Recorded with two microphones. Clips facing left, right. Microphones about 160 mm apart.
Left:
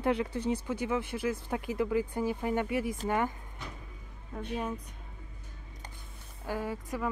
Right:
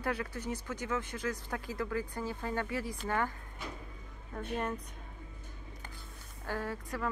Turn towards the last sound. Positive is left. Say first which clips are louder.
# left 3 dB
turn(degrees=15)  # may be behind; listen again after turning